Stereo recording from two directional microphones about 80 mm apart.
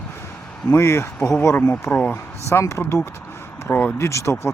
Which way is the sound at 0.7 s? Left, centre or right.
Left.